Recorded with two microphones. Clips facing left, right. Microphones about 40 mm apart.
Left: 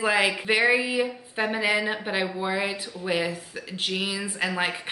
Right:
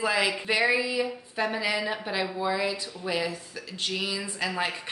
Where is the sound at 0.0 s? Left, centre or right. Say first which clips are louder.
Left 3 dB; left.